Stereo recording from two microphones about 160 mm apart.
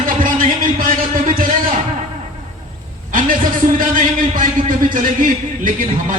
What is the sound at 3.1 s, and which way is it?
A man's voice, 60° right (ahead or behind).